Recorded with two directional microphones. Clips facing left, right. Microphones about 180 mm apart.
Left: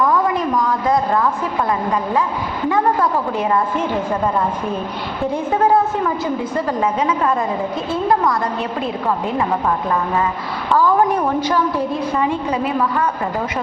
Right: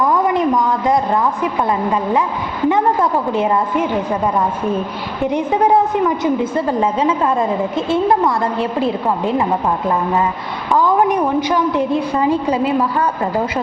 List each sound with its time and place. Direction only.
0.0 s a woman's voice: 20° right (ahead or behind)
2.6 s a woman's voice: 20° right (ahead or behind)
5.3 s a woman's voice: 15° right (ahead or behind)
10.8 s a woman's voice: 15° right (ahead or behind)
11.9 s a woman's voice: 30° right (ahead or behind)